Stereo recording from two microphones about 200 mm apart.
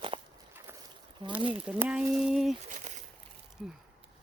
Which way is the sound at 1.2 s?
25° right (ahead or behind).